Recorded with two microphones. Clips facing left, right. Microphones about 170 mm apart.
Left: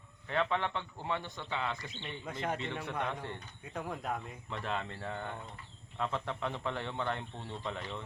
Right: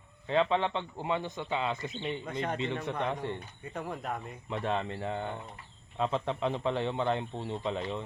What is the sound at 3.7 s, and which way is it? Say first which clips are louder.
Speech: right 1 dB; centre (ahead or behind).